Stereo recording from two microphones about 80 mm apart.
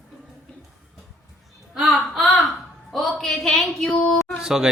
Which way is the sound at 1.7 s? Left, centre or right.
Centre.